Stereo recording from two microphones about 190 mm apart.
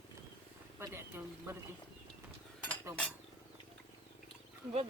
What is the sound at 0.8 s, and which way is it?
Speech, 15° right (ahead or behind).